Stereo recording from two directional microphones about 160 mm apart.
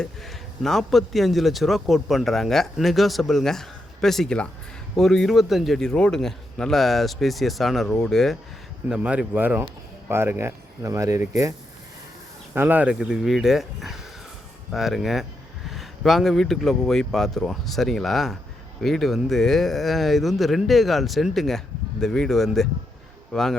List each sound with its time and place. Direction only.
0.0 s speech: centre (ahead or behind); by 11.5 s 20° right (ahead or behind)
12.5 s speech: 10° right (ahead or behind)